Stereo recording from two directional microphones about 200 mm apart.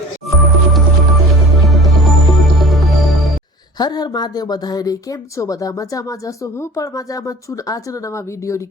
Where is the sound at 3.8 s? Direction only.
20° left (ahead or behind).